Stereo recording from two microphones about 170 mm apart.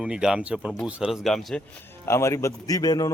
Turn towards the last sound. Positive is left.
turn(degrees=20)  # may be behind; listen again after turning